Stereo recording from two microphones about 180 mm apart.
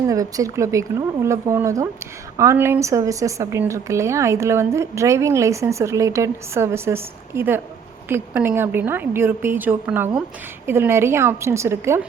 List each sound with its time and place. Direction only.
0.1 s a woman's voice: 20° right (ahead or behind)